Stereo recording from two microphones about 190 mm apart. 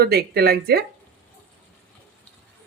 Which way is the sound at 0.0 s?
55° right (ahead or behind).